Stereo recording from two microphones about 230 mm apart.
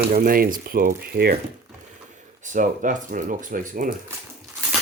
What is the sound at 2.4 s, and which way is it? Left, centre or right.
Speech, right.